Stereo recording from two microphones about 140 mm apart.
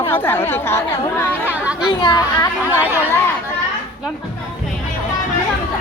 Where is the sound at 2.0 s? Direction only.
30° left (ahead or behind).